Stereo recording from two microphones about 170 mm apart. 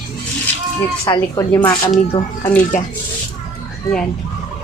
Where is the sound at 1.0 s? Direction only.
20° left (ahead or behind).